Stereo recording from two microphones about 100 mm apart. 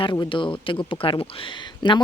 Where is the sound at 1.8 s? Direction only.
45° left (ahead or behind).